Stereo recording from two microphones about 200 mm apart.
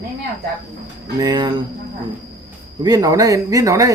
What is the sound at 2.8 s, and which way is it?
Speech, 20° right (ahead or behind).